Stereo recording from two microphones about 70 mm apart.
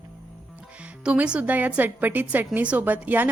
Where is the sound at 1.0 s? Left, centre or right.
Centre.